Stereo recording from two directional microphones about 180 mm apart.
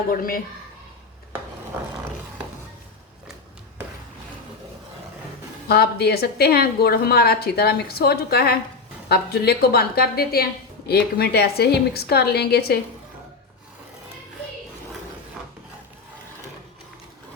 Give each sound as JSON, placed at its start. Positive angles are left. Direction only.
{"t": 0.1, "sound": "a woman's voice", "side_deg": 50}
{"t": 5.6, "sound": "a woman's voice", "side_deg": 60}